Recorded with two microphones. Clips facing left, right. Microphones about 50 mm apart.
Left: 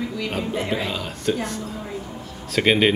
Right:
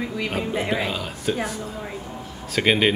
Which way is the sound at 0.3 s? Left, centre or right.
Centre.